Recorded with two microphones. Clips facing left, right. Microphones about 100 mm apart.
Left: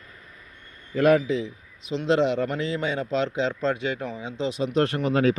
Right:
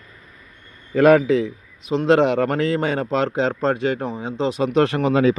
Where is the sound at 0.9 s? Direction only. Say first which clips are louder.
Right 6 dB; 90° right.